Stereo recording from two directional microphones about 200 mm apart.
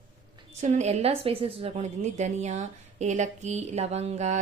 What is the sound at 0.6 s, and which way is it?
A woman's voice, 35° right (ahead or behind).